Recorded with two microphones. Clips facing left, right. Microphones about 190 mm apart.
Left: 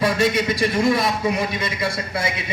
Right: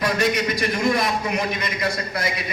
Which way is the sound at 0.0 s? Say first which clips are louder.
Left 2 dB; 25° left (ahead or behind).